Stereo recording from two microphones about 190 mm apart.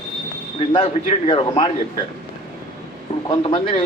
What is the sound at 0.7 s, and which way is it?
Speech, 30° left (ahead or behind).